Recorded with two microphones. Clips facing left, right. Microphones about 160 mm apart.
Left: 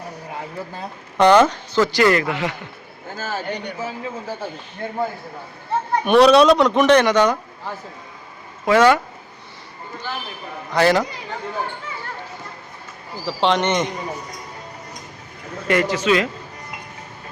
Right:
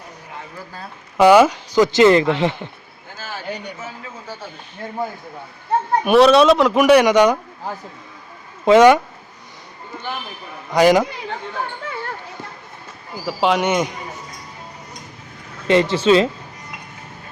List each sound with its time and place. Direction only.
1.1 s a man's voice: 5° right (ahead or behind); by 2.6 s 25° right (ahead or behind)
3.2 s a sound: 45° left (ahead or behind)
3.8 s a man's voice: 30° left (ahead or behind)
6.1 s speech: centre (ahead or behind)
8.6 s a man's voice: 20° right (ahead or behind)
10.8 s speech: 15° right (ahead or behind)
13.2 s speech: 5° right (ahead or behind)
15.6 s a man's voice: 25° right (ahead or behind)